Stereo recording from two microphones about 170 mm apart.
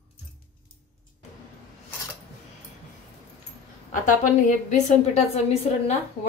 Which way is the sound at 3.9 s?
50° left (ahead or behind).